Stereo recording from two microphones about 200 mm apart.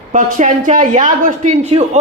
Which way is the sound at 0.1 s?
40° right (ahead or behind).